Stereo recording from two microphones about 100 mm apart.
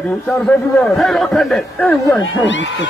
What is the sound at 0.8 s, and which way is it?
Speech, centre (ahead or behind).